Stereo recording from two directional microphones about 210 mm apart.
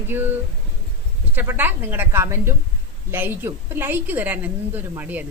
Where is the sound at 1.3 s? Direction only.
10° right (ahead or behind).